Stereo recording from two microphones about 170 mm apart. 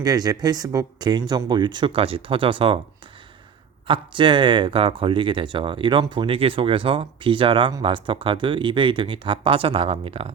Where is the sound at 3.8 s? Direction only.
30° right (ahead or behind).